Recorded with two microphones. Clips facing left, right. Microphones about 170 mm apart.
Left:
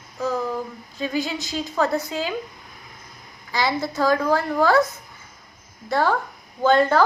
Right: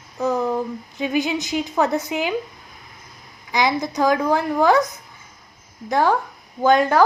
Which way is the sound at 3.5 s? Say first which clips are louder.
Right 3 dB; 20° right (ahead or behind).